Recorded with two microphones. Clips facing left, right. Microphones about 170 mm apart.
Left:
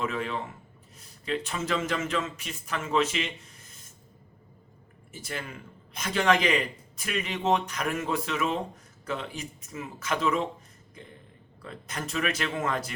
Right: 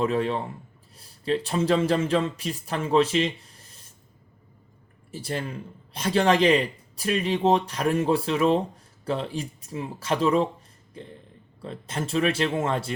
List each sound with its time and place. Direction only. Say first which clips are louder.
0.0 s speech: right 7 dB; 35° right (ahead or behind)
5.1 s speech: right 7 dB; 35° right (ahead or behind)
11.6 s speech: right 5 dB; 30° right (ahead or behind)